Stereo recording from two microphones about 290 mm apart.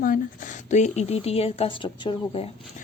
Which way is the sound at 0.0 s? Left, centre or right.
Left.